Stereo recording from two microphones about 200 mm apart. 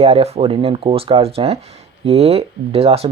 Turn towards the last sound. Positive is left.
turn(degrees=-30)  # may be behind; listen again after turning